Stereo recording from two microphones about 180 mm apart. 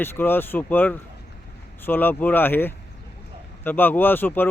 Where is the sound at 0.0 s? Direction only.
10° left (ahead or behind).